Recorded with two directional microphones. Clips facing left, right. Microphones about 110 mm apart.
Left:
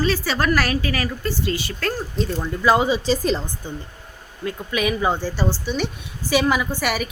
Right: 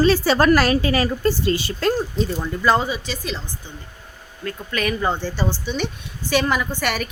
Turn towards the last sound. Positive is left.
turn(degrees=5)  # may be behind; listen again after turning